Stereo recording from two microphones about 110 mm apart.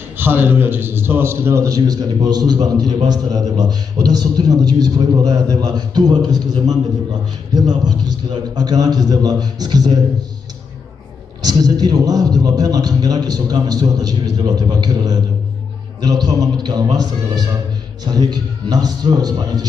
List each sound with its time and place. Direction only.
0.2 s a man's voice: 20° right (ahead or behind); by 9.9 s 40° right (ahead or behind)
11.4 s a man's voice: 35° right (ahead or behind)